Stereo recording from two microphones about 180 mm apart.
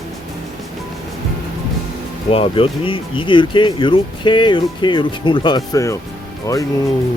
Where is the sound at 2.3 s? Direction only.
30° left (ahead or behind).